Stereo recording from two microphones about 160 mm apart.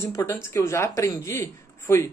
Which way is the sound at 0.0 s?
15° left (ahead or behind).